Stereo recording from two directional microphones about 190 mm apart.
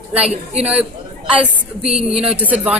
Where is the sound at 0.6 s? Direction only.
5° right (ahead or behind).